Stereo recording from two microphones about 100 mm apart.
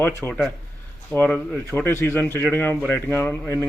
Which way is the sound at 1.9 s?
25° left (ahead or behind).